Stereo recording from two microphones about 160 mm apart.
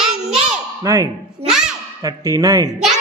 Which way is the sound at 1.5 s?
5° right (ahead or behind).